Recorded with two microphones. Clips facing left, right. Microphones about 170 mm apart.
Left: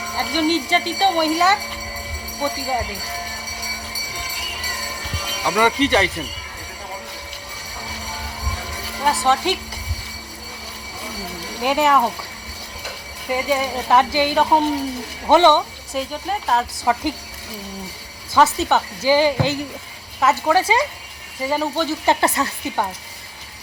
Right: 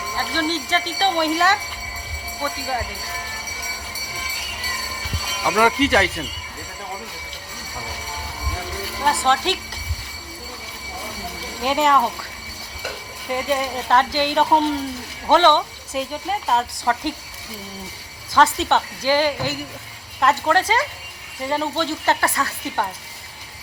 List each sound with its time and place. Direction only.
0.2 s speech: 10° left (ahead or behind)
2.4 s speech: 20° left (ahead or behind)
5.5 s speech: 5° right (ahead or behind)
9.0 s speech: 5° left (ahead or behind)
11.6 s speech: 5° left (ahead or behind)
13.3 s speech: 5° left (ahead or behind)
15.9 s speech: centre (ahead or behind)
18.3 s speech: 5° left (ahead or behind)